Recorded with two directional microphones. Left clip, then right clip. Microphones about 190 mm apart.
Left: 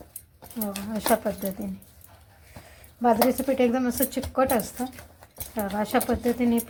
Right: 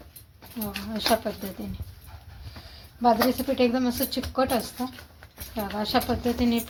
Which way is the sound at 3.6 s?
35° left (ahead or behind).